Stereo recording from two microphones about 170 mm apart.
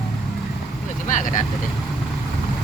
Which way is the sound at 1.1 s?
50° left (ahead or behind).